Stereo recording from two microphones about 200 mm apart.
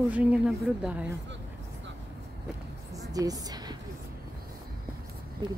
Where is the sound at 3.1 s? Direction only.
20° right (ahead or behind).